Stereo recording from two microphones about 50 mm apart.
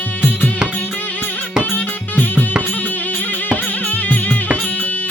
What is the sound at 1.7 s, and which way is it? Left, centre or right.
Music, left.